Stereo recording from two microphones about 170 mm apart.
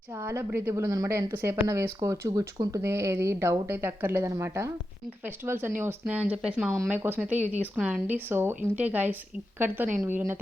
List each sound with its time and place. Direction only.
0.2 s a woman's voice: 15° right (ahead or behind)